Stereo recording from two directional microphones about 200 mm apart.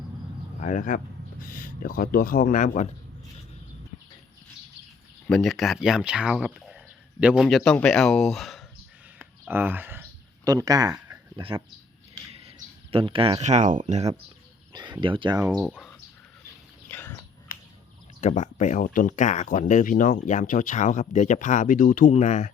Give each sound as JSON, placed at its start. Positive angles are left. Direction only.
{"t": 0.6, "sound": "speech", "side_deg": 40}
{"t": 5.3, "sound": "speech", "side_deg": 0}
{"t": 9.1, "sound": "a sound", "side_deg": -10}
{"t": 12.3, "sound": "speech", "side_deg": -30}
{"t": 14.7, "sound": "speech", "side_deg": -20}
{"t": 15.5, "sound": "speech", "side_deg": 0}
{"t": 16.9, "sound": "a sound", "side_deg": 10}
{"t": 17.5, "sound": "a sound", "side_deg": 45}
{"t": 18.2, "sound": "speech", "side_deg": 35}